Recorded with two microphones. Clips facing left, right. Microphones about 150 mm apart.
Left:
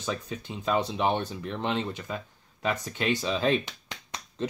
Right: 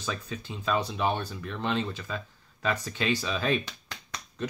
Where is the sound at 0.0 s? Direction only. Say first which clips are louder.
Left 2 dB; 20° left (ahead or behind).